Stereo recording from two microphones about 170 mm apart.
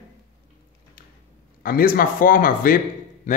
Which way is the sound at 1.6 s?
60° left (ahead or behind).